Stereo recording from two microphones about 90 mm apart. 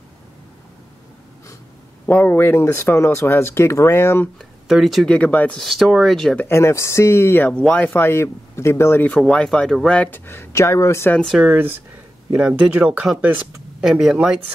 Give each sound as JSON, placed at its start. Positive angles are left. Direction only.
{"t": 2.0, "sound": "speech", "side_deg": 20}
{"t": 4.4, "sound": "speech", "side_deg": 0}
{"t": 5.1, "sound": "speech", "side_deg": 15}
{"t": 5.6, "sound": "speech", "side_deg": 0}
{"t": 6.3, "sound": "speech", "side_deg": 30}
{"t": 9.3, "sound": "speech", "side_deg": 10}
{"t": 10.1, "sound": "speech", "side_deg": 25}
{"t": 11.4, "sound": "speech", "side_deg": -20}
{"t": 13.8, "sound": "speech", "side_deg": -5}